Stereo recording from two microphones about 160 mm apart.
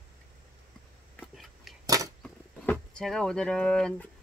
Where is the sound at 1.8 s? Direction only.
20° right (ahead or behind).